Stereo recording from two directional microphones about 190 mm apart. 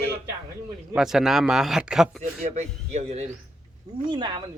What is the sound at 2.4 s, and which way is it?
Speech, 40° right (ahead or behind).